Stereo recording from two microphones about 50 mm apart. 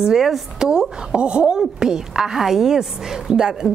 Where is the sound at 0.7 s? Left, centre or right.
Centre.